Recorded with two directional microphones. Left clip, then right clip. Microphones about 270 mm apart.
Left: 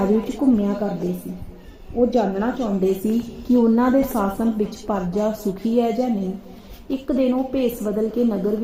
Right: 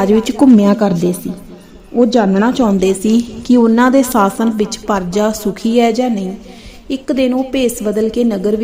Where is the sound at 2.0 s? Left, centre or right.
Right.